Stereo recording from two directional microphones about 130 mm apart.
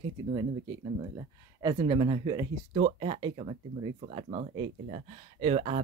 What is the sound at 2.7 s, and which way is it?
Speech, 45° right (ahead or behind).